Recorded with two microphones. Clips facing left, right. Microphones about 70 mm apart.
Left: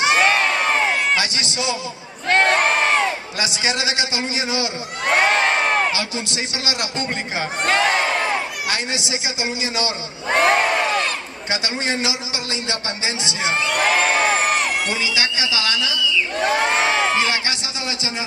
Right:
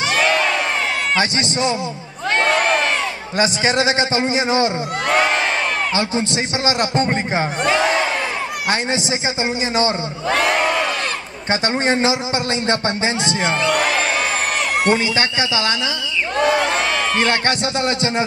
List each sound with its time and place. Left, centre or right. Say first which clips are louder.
1.1 s a man's voice: right 3 dB; right
3.3 s a man's voice: right 10 dB; right
7.8 s crowd: right 1 dB; right
8.6 s a man's voice: right 5 dB; right
11.6 s a man's voice: right 7 dB; right
14.0 s crowd: left 2 dB; left
14.9 s speech: right 6 dB; right
16.6 s crowd: left 1 dB; left
17.2 s speech: right 4 dB; right